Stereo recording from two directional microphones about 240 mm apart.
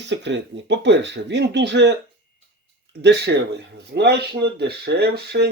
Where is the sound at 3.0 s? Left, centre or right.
Right.